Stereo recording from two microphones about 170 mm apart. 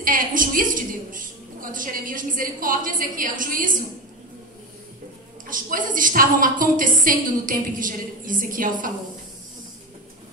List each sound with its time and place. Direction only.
0.0 s a sound: 55° right (ahead or behind)
2.6 s a woman's voice: 55° right (ahead or behind)
5.5 s a woman's voice: 55° right (ahead or behind)